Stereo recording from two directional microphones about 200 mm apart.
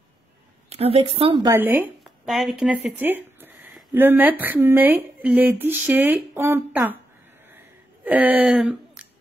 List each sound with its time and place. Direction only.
0.7 s a woman's voice: 30° right (ahead or behind)
1.5 s speech: 10° right (ahead or behind)
7.5 s a sound: 10° right (ahead or behind)